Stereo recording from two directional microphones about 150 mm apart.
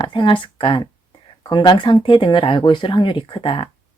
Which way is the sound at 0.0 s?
30° left (ahead or behind).